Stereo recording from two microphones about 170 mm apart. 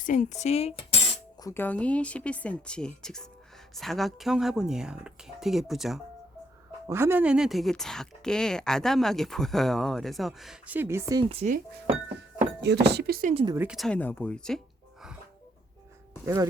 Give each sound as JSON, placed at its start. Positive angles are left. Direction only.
{"t": 0.0, "sound": "speech", "side_deg": 50}
{"t": 1.4, "sound": "a woman's voice", "side_deg": 15}
{"t": 6.8, "sound": "speech", "side_deg": -15}
{"t": 11.2, "sound": "speech", "side_deg": -35}
{"t": 12.0, "sound": "speech", "side_deg": -70}
{"t": 13.3, "sound": "speech", "side_deg": -25}
{"t": 13.6, "sound": "speech", "side_deg": 0}
{"t": 16.2, "sound": "speech", "side_deg": -15}